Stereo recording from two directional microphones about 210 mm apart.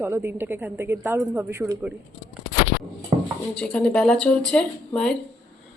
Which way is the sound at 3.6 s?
5° left (ahead or behind).